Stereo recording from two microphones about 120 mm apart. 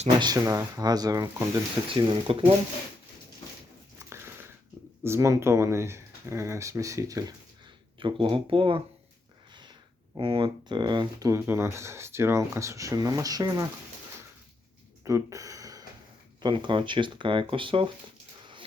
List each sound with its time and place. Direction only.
0.2 s speech: 30° right (ahead or behind)
2.0 s speech: 45° right (ahead or behind)
5.0 s speech: 25° right (ahead or behind)
7.9 s speech: 45° right (ahead or behind)
10.2 s speech: 45° right (ahead or behind)
11.3 s speech: 25° right (ahead or behind)
15.0 s a sound: 25° right (ahead or behind)
16.4 s speech: 40° right (ahead or behind)